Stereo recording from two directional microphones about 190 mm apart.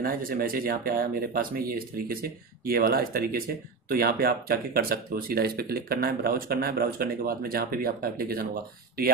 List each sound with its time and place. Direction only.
0.0 s speech: 50° right (ahead or behind)